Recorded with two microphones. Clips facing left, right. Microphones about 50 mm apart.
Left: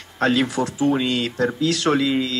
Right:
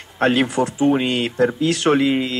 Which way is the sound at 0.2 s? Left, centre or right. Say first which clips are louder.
Right 2 dB; right.